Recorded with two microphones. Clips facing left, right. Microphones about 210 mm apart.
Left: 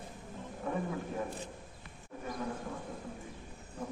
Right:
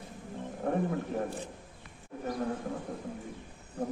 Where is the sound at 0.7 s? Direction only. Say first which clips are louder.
Right 5 dB; 60° right (ahead or behind).